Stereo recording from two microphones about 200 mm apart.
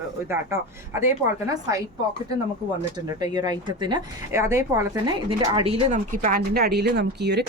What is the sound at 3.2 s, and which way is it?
A woman's voice, 20° right (ahead or behind).